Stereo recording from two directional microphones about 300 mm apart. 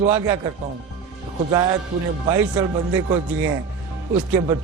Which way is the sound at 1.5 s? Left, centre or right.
Centre.